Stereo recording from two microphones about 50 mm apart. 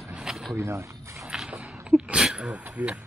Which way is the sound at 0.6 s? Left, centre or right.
Right.